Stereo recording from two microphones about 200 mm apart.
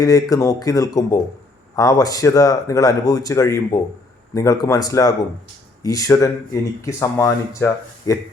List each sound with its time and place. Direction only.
0.0 s speech: 15° left (ahead or behind)